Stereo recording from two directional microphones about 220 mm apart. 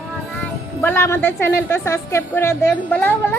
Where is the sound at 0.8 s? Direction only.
10° left (ahead or behind).